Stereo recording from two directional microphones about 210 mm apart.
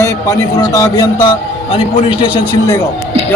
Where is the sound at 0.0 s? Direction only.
15° left (ahead or behind).